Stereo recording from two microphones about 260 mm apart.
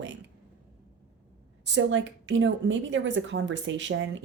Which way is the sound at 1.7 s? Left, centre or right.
Right.